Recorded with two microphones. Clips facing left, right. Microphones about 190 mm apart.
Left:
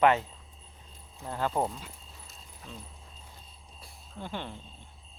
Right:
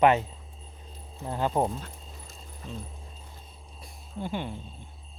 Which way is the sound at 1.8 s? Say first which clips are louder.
Right 4 dB; centre (ahead or behind).